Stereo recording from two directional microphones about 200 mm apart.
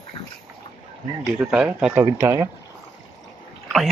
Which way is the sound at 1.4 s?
5° right (ahead or behind).